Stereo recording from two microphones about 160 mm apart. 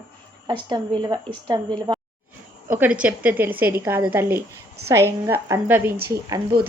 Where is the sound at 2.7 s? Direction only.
10° right (ahead or behind).